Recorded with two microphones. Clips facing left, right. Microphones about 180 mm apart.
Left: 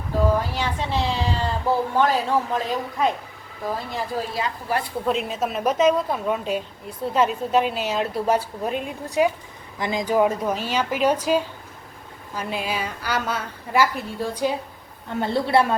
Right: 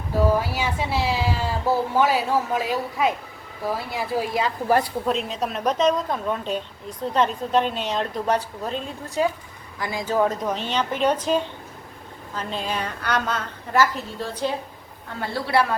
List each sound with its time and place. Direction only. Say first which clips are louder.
0.2 s speech: right 1 dB; 10° right (ahead or behind)
5.0 s a woman's voice: left 1 dB; centre (ahead or behind)
15.2 s a woman's voice: left 3 dB; 20° left (ahead or behind)